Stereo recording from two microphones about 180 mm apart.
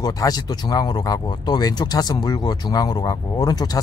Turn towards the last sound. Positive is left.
turn(degrees=20)  # may be behind; listen again after turning